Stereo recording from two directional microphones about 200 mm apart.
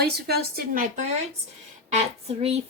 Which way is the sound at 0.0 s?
50° right (ahead or behind).